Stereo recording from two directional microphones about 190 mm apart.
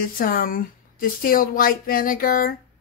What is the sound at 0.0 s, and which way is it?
Speech, 50° left (ahead or behind).